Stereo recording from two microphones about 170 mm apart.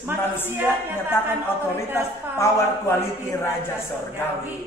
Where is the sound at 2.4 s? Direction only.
15° left (ahead or behind).